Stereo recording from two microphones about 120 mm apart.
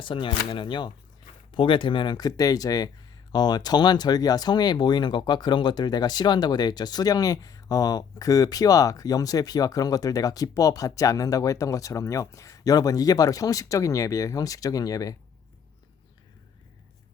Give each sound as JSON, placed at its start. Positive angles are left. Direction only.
{"t": 0.0, "sound": "speech", "side_deg": 45}